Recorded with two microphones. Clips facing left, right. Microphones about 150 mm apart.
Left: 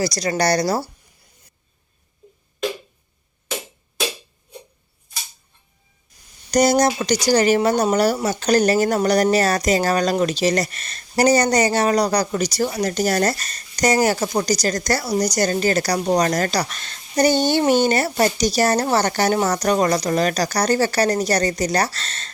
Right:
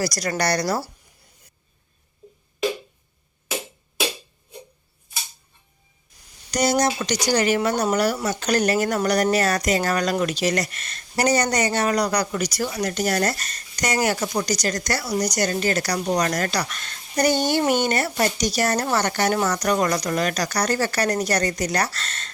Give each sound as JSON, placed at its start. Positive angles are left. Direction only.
{"t": 0.0, "sound": "speech", "side_deg": 25}
{"t": 6.5, "sound": "speech", "side_deg": 40}